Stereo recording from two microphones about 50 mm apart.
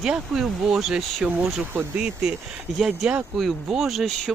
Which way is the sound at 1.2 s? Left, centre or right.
Right.